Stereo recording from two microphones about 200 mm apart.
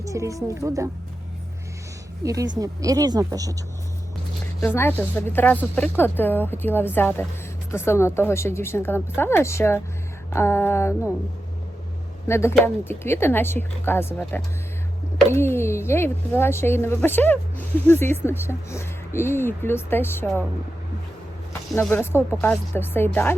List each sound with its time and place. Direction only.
0.0 s speech: 15° right (ahead or behind)
2.2 s speech: 15° right (ahead or behind)
4.6 s speech: 10° left (ahead or behind)
12.3 s speech: 15° left (ahead or behind)
21.8 s speech: 10° left (ahead or behind)